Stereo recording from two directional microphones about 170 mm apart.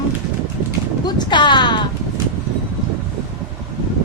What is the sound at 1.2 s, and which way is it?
Speech, 25° left (ahead or behind).